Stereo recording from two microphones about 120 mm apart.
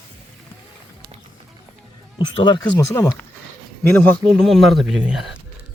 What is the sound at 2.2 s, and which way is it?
Speech, 40° left (ahead or behind).